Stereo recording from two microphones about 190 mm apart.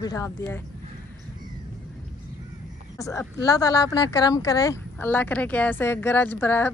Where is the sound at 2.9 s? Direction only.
15° left (ahead or behind).